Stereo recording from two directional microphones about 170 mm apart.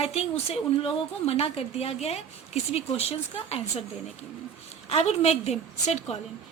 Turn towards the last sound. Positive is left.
turn(degrees=40)  # may be behind; listen again after turning